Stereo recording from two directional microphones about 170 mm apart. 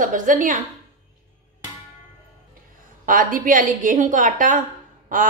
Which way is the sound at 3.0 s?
55° right (ahead or behind).